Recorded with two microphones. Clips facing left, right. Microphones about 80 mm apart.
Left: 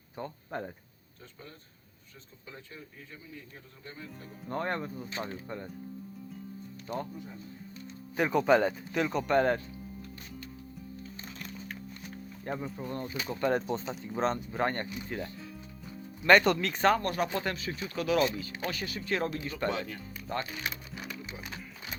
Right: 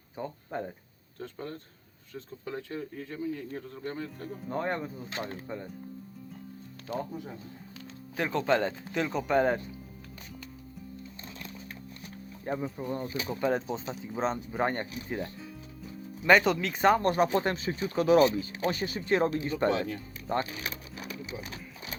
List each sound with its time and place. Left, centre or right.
0.2 s speech: centre
1.2 s speech: right
4.4 s speech: centre
6.8 s speech: centre
8.1 s speech: centre
12.5 s speech: centre
16.8 s speech: right